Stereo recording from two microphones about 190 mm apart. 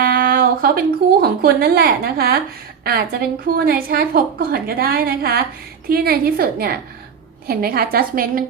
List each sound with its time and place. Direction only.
0.0 s a woman's voice: 50° right (ahead or behind)